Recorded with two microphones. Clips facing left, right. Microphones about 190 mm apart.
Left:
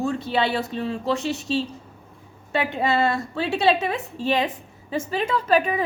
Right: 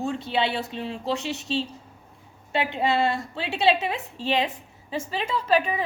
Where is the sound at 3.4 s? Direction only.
45° left (ahead or behind).